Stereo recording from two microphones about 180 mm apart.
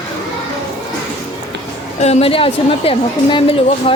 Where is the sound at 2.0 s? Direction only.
35° left (ahead or behind).